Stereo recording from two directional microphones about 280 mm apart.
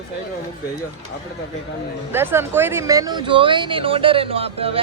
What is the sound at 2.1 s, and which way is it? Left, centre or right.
Speech, centre.